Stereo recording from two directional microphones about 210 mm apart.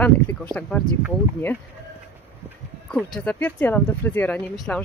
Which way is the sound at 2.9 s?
5° left (ahead or behind).